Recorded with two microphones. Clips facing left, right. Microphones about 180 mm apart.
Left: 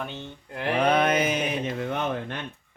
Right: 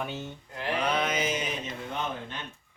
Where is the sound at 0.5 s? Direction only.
60° left (ahead or behind).